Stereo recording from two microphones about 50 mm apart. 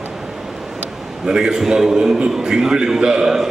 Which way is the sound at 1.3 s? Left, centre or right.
Centre.